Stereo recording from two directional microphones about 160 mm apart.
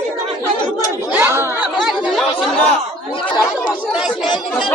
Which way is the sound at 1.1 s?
15° right (ahead or behind).